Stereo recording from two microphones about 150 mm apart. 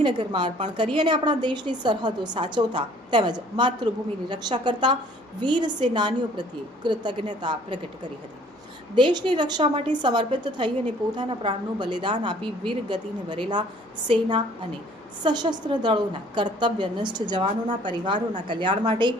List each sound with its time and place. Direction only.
0.0 s a woman's voice: 30° right (ahead or behind)
9.0 s a woman's voice: 30° right (ahead or behind)